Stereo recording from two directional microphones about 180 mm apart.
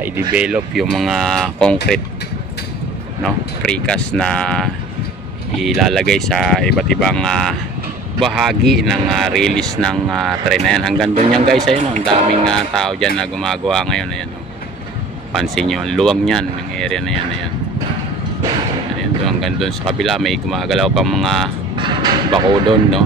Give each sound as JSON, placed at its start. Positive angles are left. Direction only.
{"t": 0.0, "sound": "speech", "side_deg": -10}
{"t": 3.3, "sound": "speech", "side_deg": 5}
{"t": 15.3, "sound": "speech", "side_deg": 0}
{"t": 19.2, "sound": "speech", "side_deg": 0}
{"t": 21.7, "sound": "music", "side_deg": -30}